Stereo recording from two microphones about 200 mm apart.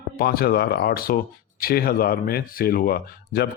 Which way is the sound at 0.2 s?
50° left (ahead or behind).